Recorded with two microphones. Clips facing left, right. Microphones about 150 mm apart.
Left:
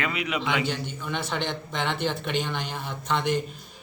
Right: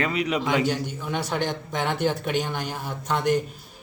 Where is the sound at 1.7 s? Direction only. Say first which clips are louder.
Right 3 dB; 10° right (ahead or behind).